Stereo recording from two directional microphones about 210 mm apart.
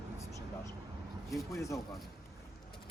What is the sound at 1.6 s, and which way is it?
Speech, 15° left (ahead or behind).